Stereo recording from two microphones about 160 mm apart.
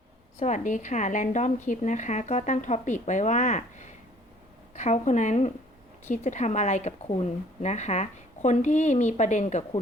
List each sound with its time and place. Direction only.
0.3 s a woman's voice: 50° left (ahead or behind)